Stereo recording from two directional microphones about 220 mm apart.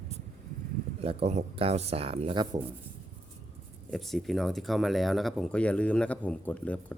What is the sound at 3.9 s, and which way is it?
Speech, centre (ahead or behind).